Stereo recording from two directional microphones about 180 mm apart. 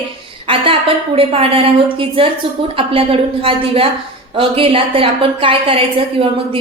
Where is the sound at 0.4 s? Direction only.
30° right (ahead or behind).